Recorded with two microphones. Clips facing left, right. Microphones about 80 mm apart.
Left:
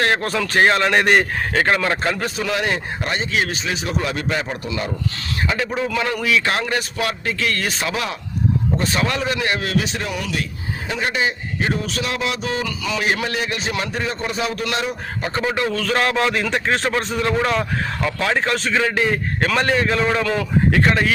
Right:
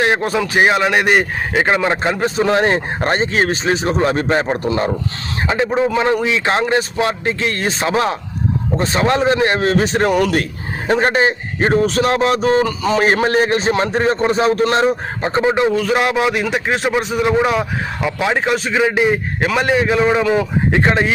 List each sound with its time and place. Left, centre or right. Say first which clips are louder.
0.0 s speech: right 4 dB; centre
1.5 s speech: right 3 dB; centre; by 4.9 s right
5.5 s a man's voice: right 7 dB; right